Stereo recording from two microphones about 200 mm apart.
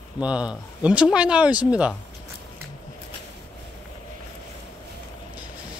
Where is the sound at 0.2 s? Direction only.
5° right (ahead or behind).